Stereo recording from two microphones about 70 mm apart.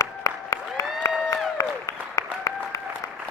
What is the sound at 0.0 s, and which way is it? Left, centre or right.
Applause, left.